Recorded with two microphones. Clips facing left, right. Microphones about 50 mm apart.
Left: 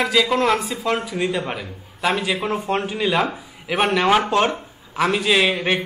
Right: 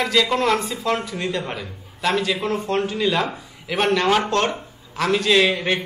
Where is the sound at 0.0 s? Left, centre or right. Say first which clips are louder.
Left 1 dB; centre.